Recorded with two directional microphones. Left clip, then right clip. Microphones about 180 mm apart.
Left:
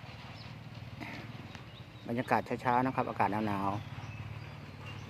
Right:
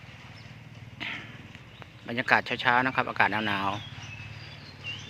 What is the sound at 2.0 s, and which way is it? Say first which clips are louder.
Speech: right 7 dB; 5° right (ahead or behind).